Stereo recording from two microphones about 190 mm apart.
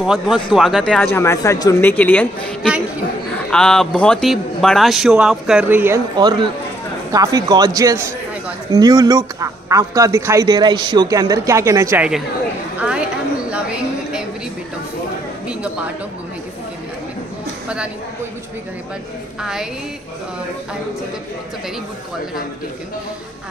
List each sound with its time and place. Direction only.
0.0 s a man's voice: centre (ahead or behind)
6.1 s a man's voice: 25° right (ahead or behind)
12.7 s chatter: 5° right (ahead or behind)
13.5 s a sound: 5° right (ahead or behind)
15.4 s a sound: 5° right (ahead or behind)
19.4 s a man's voice: 5° right (ahead or behind)